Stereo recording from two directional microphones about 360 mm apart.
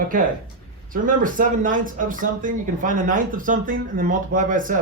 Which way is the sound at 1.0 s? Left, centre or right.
Right.